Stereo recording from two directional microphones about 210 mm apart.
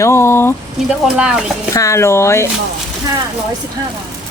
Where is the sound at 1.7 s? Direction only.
15° left (ahead or behind).